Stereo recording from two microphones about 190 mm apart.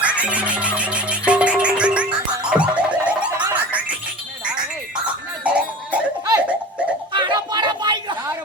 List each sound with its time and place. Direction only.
0.0 s music: 5° right (ahead or behind)
5.0 s music: 5° right (ahead or behind)
7.1 s a sound: 25° right (ahead or behind)